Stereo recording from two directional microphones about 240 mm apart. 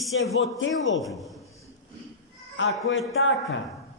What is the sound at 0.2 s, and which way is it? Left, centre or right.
Speech, left.